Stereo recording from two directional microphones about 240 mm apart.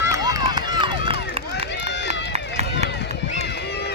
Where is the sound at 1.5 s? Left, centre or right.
Left.